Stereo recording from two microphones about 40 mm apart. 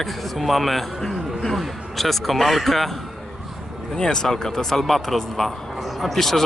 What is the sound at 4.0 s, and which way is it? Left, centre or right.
A man's voice, centre.